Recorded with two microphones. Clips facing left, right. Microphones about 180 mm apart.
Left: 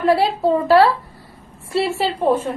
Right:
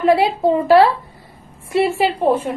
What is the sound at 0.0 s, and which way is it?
A woman's voice, 15° right (ahead or behind).